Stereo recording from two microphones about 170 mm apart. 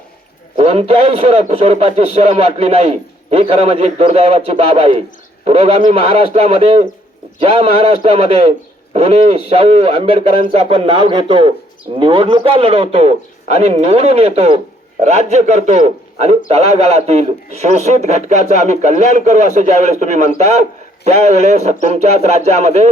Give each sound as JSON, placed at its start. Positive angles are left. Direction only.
{"t": 0.5, "sound": "a man's voice", "side_deg": -35}